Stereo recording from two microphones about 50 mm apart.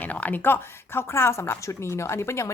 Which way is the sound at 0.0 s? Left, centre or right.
Left.